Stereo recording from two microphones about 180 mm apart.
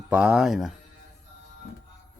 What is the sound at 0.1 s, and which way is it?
Speech, 5° right (ahead or behind).